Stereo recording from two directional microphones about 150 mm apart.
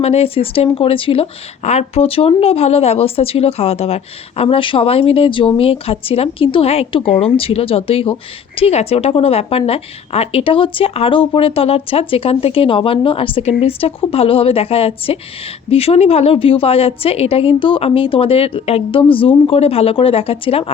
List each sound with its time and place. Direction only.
0.0 s speech: 45° left (ahead or behind)